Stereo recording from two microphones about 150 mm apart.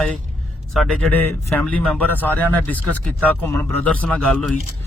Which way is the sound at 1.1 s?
10° left (ahead or behind).